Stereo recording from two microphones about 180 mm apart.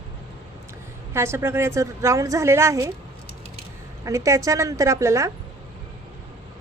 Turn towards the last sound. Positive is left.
turn(degrees=-15)  # may be behind; listen again after turning